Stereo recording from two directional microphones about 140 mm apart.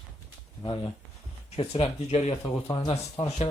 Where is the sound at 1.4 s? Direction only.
45° left (ahead or behind).